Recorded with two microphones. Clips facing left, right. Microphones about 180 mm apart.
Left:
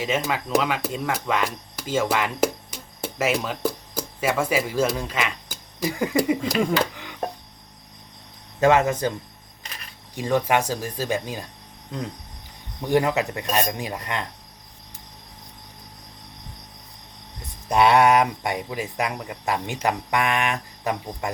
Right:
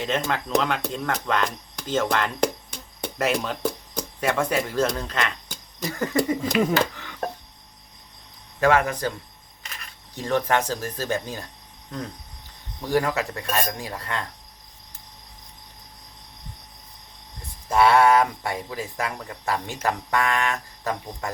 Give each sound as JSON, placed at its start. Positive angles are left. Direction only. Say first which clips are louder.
{"t": 0.0, "sound": "speech", "louder": "left 1 dB", "side_deg": 5}
{"t": 6.6, "sound": "speech", "louder": "right 2 dB", "side_deg": -5}
{"t": 6.9, "sound": "music", "louder": "left 1 dB", "side_deg": 15}
{"t": 8.6, "sound": "speech", "louder": "left 2 dB", "side_deg": 25}
{"t": 10.2, "sound": "speech", "louder": "left 1 dB", "side_deg": 10}
{"t": 12.8, "sound": "speech", "louder": "left 2 dB", "side_deg": 20}
{"t": 17.7, "sound": "speech", "louder": "even", "side_deg": 20}